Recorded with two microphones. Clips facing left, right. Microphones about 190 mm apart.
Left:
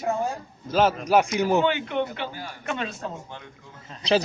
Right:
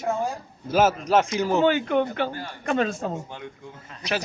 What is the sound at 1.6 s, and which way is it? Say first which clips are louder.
Speech: right 4 dB; 45° right (ahead or behind).